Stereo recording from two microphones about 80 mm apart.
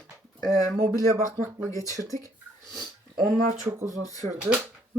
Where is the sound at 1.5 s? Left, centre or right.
Right.